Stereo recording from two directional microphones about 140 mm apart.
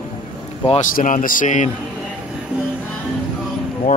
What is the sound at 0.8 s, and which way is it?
Speech, 65° left (ahead or behind).